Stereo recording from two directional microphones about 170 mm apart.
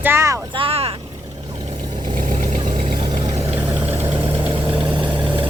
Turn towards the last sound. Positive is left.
turn(degrees=-30)  # may be behind; listen again after turning